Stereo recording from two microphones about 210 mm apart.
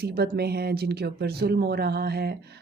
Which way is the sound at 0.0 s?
50° right (ahead or behind).